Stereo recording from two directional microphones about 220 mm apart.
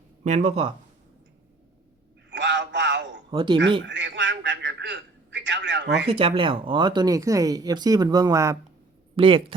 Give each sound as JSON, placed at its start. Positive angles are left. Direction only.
{"t": 0.3, "sound": "speech", "side_deg": -30}
{"t": 2.3, "sound": "a sound", "side_deg": -55}
{"t": 3.3, "sound": "speech", "side_deg": -20}
{"t": 3.8, "sound": "telephone", "side_deg": -55}
{"t": 6.1, "sound": "speech", "side_deg": -25}